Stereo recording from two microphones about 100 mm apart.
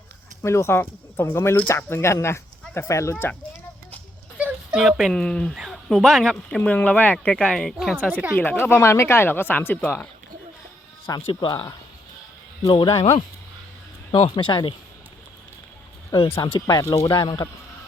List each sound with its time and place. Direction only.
0.4 s speech: 25° left (ahead or behind)
4.4 s a sound: 15° right (ahead or behind)
4.8 s speech: centre (ahead or behind)
6.6 s speech: 15° left (ahead or behind); by 7.9 s centre (ahead or behind)
8.4 s speech: 20° left (ahead or behind)
11.3 s speech: 55° left (ahead or behind); by 13.2 s 85° left
14.1 s speech: 50° left (ahead or behind)
16.1 s speech: 65° left (ahead or behind)
16.4 s speech: 45° left (ahead or behind)